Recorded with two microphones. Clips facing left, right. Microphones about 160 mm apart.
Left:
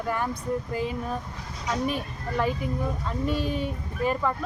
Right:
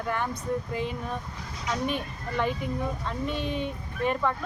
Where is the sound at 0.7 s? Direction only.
40° left (ahead or behind).